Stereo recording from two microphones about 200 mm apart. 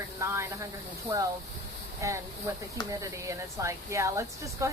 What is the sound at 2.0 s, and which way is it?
Speech, 15° right (ahead or behind).